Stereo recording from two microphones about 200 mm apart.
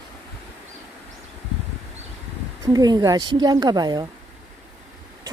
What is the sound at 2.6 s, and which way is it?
Speech, 20° right (ahead or behind).